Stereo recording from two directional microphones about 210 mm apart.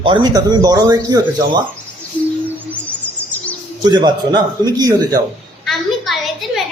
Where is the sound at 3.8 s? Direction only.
20° right (ahead or behind).